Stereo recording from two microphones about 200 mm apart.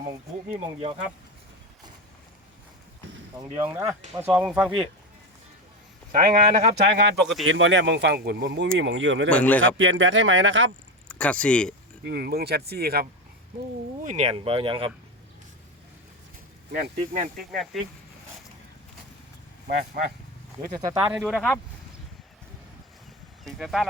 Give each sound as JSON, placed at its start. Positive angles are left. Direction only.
{"t": 0.0, "sound": "speech", "side_deg": -35}
{"t": 3.7, "sound": "speech", "side_deg": -15}
{"t": 6.1, "sound": "speech", "side_deg": -45}
{"t": 7.2, "sound": "speech", "side_deg": 0}
{"t": 7.4, "sound": "speech", "side_deg": -70}
{"t": 9.3, "sound": "a man's voice", "side_deg": 5}
{"t": 9.7, "sound": "speech", "side_deg": -75}
{"t": 11.1, "sound": "speech", "side_deg": 5}
{"t": 12.0, "sound": "speech", "side_deg": -55}
{"t": 14.0, "sound": "speech", "side_deg": -35}
{"t": 17.3, "sound": "speech", "side_deg": 0}
{"t": 20.0, "sound": "speech", "side_deg": -45}
{"t": 21.0, "sound": "speech", "side_deg": -5}
{"t": 23.4, "sound": "speech", "side_deg": 0}